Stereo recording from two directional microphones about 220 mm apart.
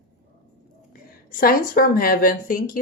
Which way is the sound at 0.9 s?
40° left (ahead or behind).